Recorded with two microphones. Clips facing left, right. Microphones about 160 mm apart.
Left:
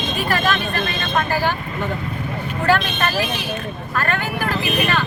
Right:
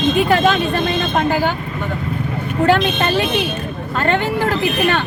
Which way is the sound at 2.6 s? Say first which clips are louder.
Right 4 dB; 20° right (ahead or behind).